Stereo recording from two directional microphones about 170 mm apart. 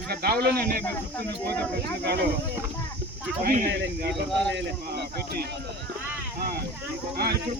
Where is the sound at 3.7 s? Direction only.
85° right.